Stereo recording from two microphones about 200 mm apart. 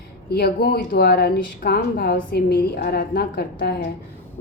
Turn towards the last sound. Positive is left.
turn(degrees=50)  # may be behind; listen again after turning